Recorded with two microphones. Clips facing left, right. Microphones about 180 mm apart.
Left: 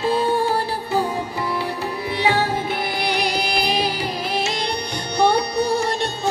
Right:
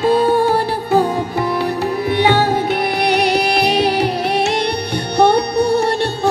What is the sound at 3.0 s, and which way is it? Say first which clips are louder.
Music: right 8 dB; 70° right (ahead or behind).